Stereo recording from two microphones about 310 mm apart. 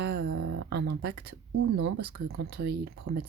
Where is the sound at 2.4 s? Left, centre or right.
Right.